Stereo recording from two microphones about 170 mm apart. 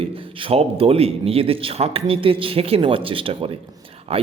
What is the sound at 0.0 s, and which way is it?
Speech, 35° right (ahead or behind).